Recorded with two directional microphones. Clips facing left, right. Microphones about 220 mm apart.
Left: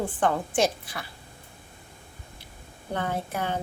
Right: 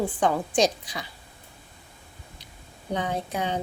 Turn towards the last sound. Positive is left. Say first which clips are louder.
# right 1 dB
turn(degrees=-15)  # may be behind; listen again after turning